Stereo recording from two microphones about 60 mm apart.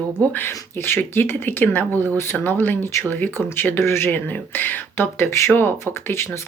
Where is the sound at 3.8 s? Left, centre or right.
Left.